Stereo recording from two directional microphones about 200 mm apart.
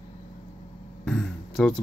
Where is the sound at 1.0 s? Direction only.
5° left (ahead or behind).